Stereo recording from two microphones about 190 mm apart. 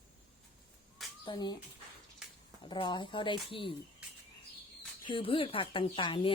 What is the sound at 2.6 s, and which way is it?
Speech, 25° left (ahead or behind).